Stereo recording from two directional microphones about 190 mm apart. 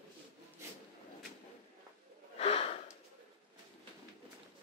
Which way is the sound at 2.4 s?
30° left (ahead or behind).